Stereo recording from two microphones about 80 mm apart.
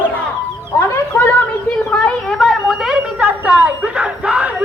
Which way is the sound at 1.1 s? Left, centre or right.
Left.